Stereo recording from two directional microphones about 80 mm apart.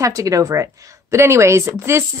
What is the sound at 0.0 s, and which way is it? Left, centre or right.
Speech, right.